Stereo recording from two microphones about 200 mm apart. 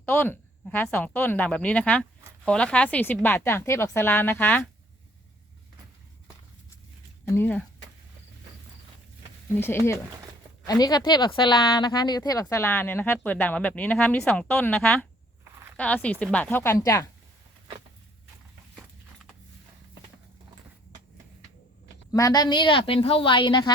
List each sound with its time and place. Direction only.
0.0 s a woman's voice: 10° left (ahead or behind)
7.3 s a woman's voice: 10° left (ahead or behind)
9.6 s a woman's voice: 10° left (ahead or behind)
22.1 s a woman's voice: 15° left (ahead or behind)